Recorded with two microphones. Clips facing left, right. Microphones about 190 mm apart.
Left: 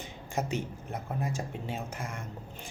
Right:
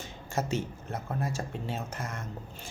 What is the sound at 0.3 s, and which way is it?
Speech, 15° left (ahead or behind).